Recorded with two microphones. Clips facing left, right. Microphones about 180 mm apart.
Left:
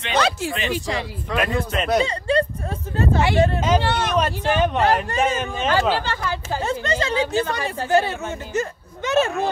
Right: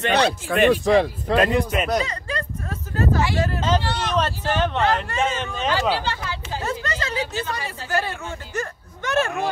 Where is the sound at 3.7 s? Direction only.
60° left (ahead or behind).